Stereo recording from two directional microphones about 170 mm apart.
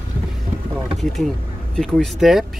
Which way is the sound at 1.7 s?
Centre (ahead or behind).